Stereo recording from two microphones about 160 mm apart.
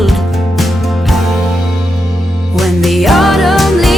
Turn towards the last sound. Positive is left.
turn(degrees=0)  # may be behind; listen again after turning